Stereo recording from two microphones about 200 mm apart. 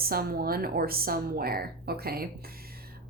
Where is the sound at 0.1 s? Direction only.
50° right (ahead or behind).